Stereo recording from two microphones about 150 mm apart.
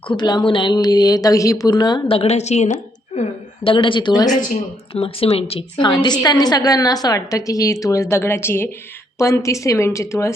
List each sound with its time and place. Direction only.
0.1 s a woman's voice: 30° left (ahead or behind); by 2.7 s 50° left (ahead or behind)
3.2 s a woman's voice: 40° left (ahead or behind)
4.3 s speech: 60° left (ahead or behind)
4.9 s a woman's voice: 40° left (ahead or behind); by 10.3 s 20° left (ahead or behind)